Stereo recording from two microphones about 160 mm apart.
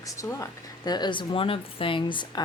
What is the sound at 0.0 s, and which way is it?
A woman's voice, 20° left (ahead or behind).